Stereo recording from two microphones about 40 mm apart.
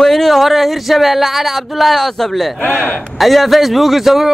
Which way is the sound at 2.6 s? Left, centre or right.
Left.